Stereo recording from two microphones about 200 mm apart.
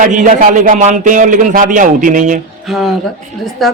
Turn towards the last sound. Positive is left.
turn(degrees=0)  # may be behind; listen again after turning